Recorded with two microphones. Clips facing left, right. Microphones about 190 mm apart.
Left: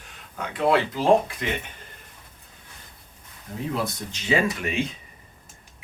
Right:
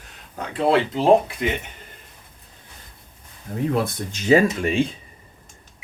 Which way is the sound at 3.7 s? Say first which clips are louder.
Right 5 dB; 50° right (ahead or behind).